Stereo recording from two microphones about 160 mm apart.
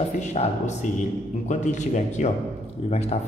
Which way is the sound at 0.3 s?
45° left (ahead or behind).